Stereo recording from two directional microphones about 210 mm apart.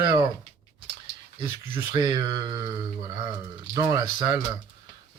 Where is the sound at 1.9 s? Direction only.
20° right (ahead or behind).